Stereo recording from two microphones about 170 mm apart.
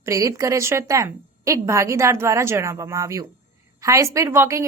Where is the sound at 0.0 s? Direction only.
20° right (ahead or behind).